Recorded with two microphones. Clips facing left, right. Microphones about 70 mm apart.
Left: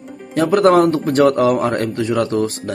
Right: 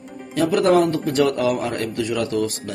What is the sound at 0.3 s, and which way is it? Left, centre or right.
A man's voice, left.